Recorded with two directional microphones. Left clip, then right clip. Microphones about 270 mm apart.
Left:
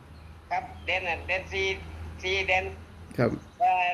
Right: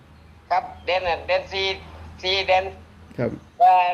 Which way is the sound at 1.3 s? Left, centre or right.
Right.